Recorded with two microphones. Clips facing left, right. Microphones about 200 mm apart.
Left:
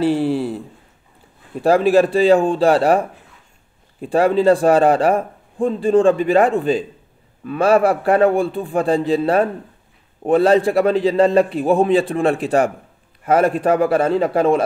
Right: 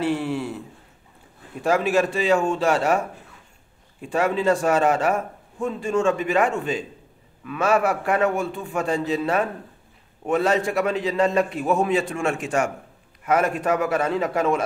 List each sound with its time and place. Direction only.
0.0 s a man's voice: 35° left (ahead or behind)
1.6 s a man's voice: 35° left (ahead or behind)